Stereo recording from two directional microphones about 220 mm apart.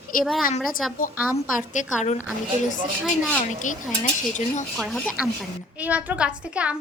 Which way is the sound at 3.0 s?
Centre (ahead or behind).